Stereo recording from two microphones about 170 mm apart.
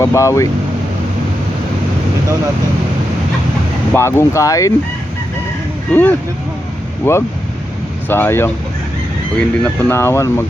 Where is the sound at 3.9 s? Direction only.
15° left (ahead or behind).